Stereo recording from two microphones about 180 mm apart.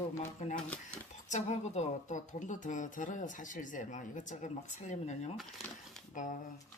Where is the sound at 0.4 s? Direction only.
40° left (ahead or behind).